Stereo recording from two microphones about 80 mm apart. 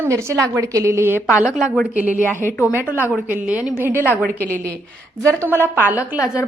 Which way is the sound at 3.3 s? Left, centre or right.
Centre.